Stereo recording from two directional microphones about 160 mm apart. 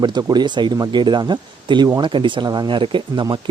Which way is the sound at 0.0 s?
25° right (ahead or behind).